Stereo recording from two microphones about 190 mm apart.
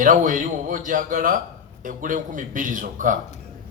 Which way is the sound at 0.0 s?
45° right (ahead or behind).